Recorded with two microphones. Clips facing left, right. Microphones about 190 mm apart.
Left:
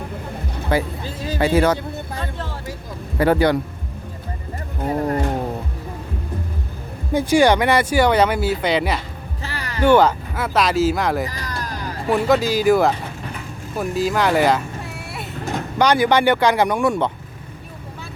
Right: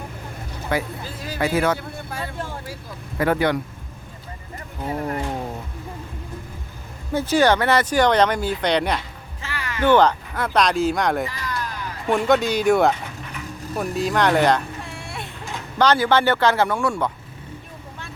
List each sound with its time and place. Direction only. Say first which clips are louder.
0.7 s speech: left 4 dB; 30° left (ahead or behind)
2.2 s a sound: left 1 dB; 10° right (ahead or behind)
3.2 s speech: left 4 dB; 30° left (ahead or behind)
4.8 s a sound: left 5 dB; 40° left (ahead or behind)
7.1 s speech: left 3 dB; 15° left (ahead or behind)
9.4 s music: left 1 dB; 35° left (ahead or behind)
9.8 s speech: left 2 dB; 10° left (ahead or behind)
11.3 s a sound: even; 40° left (ahead or behind)
12.0 s speech: left 1 dB; 5° left (ahead or behind)
13.7 s vehicle: left 2 dB; centre (ahead or behind)
15.8 s speech: left 2 dB; 15° left (ahead or behind)